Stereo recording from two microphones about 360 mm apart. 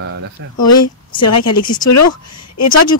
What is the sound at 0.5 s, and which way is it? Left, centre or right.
Speech, left.